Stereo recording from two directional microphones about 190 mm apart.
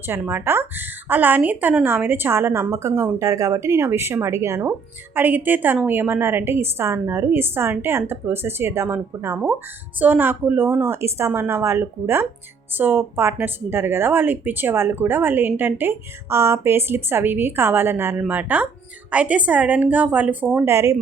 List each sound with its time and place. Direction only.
0.0 s a woman's voice: 10° right (ahead or behind)